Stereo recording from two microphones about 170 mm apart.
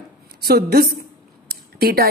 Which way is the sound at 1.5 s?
65° right (ahead or behind).